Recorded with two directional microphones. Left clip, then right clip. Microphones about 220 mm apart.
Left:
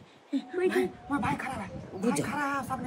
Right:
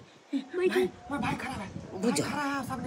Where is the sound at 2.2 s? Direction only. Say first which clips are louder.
Left 1 dB; centre (ahead or behind).